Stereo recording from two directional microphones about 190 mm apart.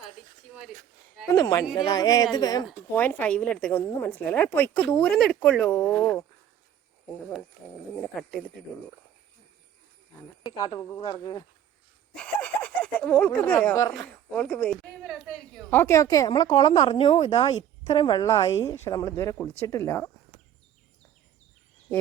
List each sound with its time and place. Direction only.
1.4 s speech: 15° left (ahead or behind)
2.9 s speech: 10° left (ahead or behind)
7.9 s a woman's voice: 5° left (ahead or behind)
10.4 s speech: 20° left (ahead or behind)
12.1 s a woman's voice: 5° left (ahead or behind)
15.7 s speech: 15° left (ahead or behind)